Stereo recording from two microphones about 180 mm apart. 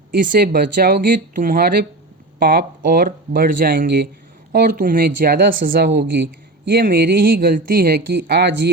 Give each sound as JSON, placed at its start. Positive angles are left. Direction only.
{"t": 0.3, "sound": "speech", "side_deg": -55}
{"t": 5.8, "sound": "speech", "side_deg": -70}